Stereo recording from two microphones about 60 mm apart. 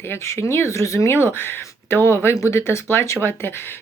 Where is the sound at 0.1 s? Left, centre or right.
Left.